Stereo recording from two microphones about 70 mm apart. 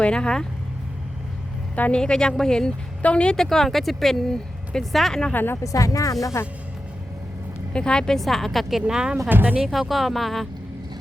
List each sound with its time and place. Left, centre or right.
0.0 s speech: centre
1.7 s a woman's voice: left
2.0 s speech: centre
3.3 s speech: centre
5.3 s speech: left
5.6 s speech: left
6.4 s speech: left
7.7 s speech: centre
8.8 s speech: centre
9.3 s speech: right
9.6 s speech: centre